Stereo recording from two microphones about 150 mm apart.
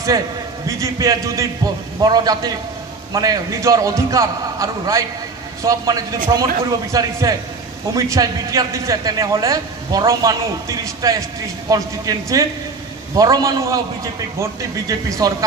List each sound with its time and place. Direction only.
0.7 s a man's voice: 20° right (ahead or behind)